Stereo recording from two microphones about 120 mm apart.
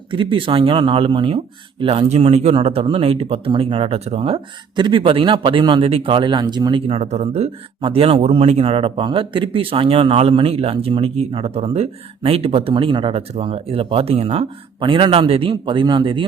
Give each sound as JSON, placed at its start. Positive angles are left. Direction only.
{"t": 0.1, "sound": "speech", "side_deg": -45}
{"t": 2.0, "sound": "speech", "side_deg": -60}
{"t": 4.8, "sound": "speech", "side_deg": -45}
{"t": 6.8, "sound": "speech", "side_deg": -60}
{"t": 7.8, "sound": "speech", "side_deg": -50}
{"t": 14.8, "sound": "speech", "side_deg": -45}